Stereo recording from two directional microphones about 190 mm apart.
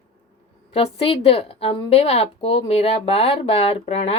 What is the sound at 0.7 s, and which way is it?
A woman's voice, 30° left (ahead or behind).